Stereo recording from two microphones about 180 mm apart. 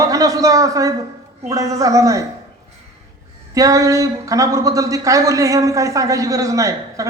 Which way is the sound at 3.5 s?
15° right (ahead or behind).